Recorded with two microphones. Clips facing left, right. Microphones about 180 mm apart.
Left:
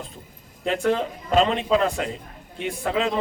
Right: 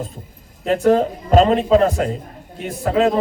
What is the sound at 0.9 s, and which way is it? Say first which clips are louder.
A man's voice: right 9 dB; 40° right (ahead or behind).